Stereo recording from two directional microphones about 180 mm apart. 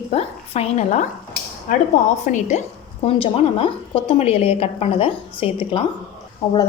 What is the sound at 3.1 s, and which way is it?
A woman's voice, 30° left (ahead or behind).